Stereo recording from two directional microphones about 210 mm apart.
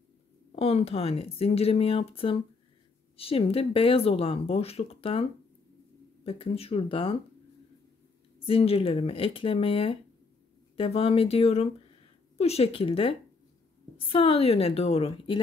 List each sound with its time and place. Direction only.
0.6 s speech: 30° left (ahead or behind)
6.2 s speech: 25° left (ahead or behind)
8.5 s speech: 25° left (ahead or behind)